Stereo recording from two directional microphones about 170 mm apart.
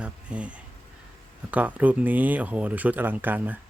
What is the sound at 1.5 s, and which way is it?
Speech, 10° right (ahead or behind).